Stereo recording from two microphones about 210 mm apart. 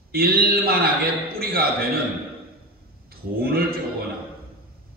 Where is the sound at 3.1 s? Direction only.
45° right (ahead or behind).